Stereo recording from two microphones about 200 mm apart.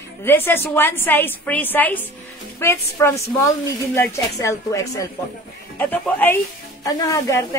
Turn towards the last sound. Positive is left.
turn(degrees=15)  # may be behind; listen again after turning